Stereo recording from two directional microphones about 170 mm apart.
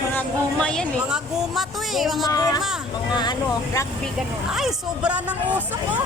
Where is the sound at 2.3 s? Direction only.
20° left (ahead or behind).